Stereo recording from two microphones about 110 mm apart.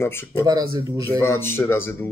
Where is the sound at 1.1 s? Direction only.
20° left (ahead or behind).